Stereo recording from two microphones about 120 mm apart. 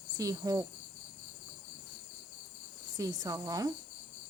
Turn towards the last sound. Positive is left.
turn(degrees=-30)  # may be behind; listen again after turning